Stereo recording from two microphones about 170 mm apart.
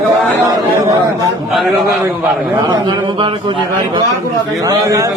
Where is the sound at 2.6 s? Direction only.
25° right (ahead or behind).